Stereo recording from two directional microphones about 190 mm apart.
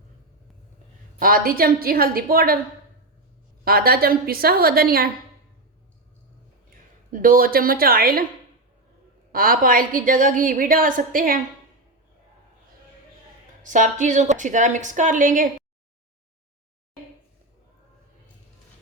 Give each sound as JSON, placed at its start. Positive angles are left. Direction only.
{"t": 1.2, "sound": "a woman's voice", "side_deg": -50}
{"t": 3.6, "sound": "a woman's voice", "side_deg": -55}
{"t": 7.1, "sound": "a woman's voice", "side_deg": -45}
{"t": 9.3, "sound": "a woman's voice", "side_deg": -50}
{"t": 13.6, "sound": "a woman's voice", "side_deg": -40}